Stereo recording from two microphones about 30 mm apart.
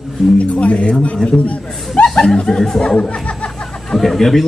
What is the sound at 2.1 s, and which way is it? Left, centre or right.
Speech, left.